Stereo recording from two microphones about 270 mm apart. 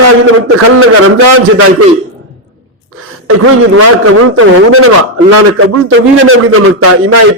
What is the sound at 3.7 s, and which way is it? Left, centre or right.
A man's voice, right.